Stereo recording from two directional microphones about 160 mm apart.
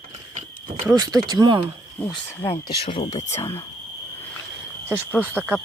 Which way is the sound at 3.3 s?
20° left (ahead or behind).